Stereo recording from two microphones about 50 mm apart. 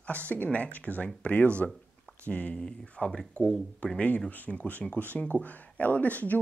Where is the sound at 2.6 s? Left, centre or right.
Centre.